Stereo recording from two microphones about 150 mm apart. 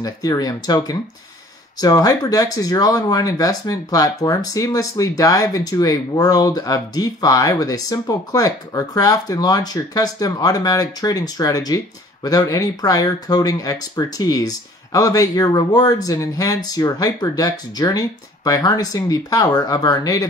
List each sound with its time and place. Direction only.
0.0 s speech: 25° left (ahead or behind)